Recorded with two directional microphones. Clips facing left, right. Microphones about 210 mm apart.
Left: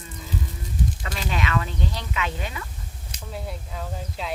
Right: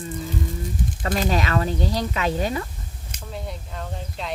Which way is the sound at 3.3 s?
Centre (ahead or behind).